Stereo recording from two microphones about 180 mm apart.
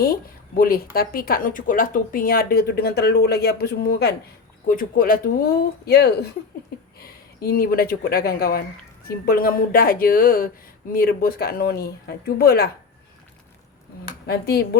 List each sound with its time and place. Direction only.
0.0 s speech: 55° left (ahead or behind)
4.7 s speech: 50° left (ahead or behind)
14.0 s speech: 60° left (ahead or behind)